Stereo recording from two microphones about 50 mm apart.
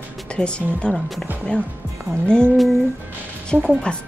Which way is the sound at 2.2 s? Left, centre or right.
Centre.